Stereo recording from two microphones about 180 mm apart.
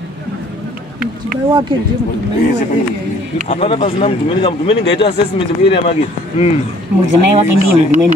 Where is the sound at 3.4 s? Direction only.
30° left (ahead or behind).